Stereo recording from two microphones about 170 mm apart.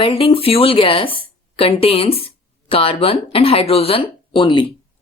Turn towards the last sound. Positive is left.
turn(degrees=30)  # may be behind; listen again after turning